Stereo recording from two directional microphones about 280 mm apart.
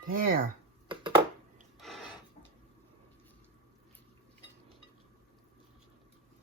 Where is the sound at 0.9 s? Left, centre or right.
Centre.